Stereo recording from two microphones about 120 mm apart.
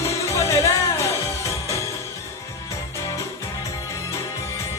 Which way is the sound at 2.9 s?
25° left (ahead or behind).